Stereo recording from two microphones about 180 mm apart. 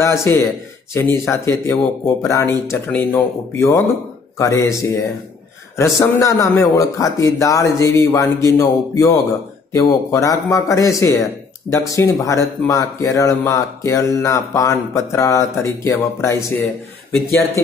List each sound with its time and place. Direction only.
0.0 s speech: 15° left (ahead or behind)